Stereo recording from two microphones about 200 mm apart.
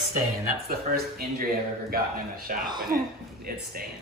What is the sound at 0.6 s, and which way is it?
Speech, 50° right (ahead or behind).